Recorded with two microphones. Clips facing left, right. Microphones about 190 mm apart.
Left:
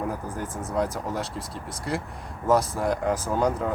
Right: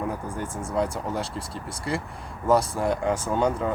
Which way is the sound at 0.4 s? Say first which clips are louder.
Right 1 dB; 30° right (ahead or behind).